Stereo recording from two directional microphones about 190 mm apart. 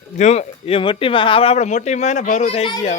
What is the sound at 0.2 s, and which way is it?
Speech, 35° left (ahead or behind).